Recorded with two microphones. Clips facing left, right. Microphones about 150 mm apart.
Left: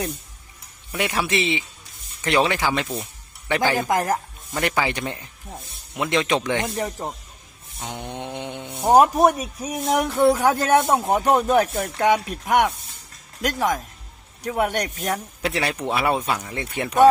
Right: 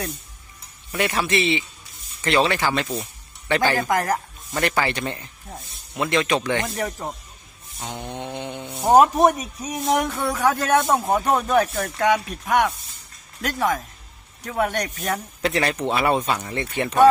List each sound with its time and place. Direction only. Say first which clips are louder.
0.9 s speech: right 1 dB; 10° left (ahead or behind)
2.8 s speech: right 1 dB; centre (ahead or behind)
3.5 s speech: even; 15° left (ahead or behind)
10.3 s speech: left 1 dB; 20° left (ahead or behind)
11.0 s speech: left 1 dB; 5° left (ahead or behind)
11.3 s speech: left 1 dB; 25° left (ahead or behind)